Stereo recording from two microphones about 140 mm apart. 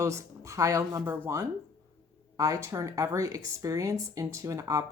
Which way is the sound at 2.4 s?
20° right (ahead or behind).